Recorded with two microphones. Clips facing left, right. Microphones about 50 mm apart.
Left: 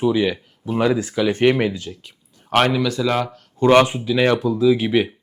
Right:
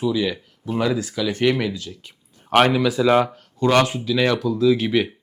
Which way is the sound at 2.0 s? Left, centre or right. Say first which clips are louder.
Right 1 dB; centre.